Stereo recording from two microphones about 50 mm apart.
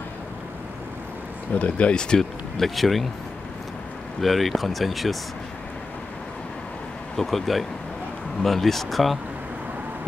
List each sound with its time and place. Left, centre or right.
1.6 s speech: left
2.6 s speech: centre
4.2 s speech: centre
7.2 s speech: centre